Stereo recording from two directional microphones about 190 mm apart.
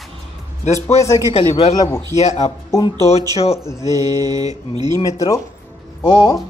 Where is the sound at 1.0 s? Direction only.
15° left (ahead or behind).